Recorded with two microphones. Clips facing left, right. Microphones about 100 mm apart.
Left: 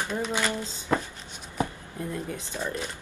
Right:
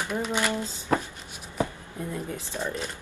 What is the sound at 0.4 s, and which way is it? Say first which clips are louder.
Speech: right 1 dB; 15° right (ahead or behind).